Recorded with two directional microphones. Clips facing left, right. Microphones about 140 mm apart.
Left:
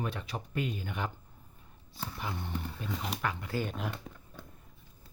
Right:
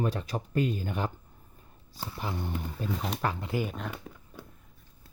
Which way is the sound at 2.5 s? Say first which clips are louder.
Right 4 dB; 10° right (ahead or behind).